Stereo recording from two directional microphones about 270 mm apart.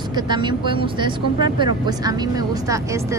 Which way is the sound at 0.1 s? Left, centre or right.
Centre.